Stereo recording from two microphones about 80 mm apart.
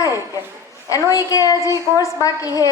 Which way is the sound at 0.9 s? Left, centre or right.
Left.